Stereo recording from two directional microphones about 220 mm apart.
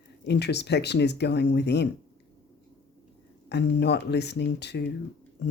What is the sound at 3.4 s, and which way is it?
Speech, 50° left (ahead or behind).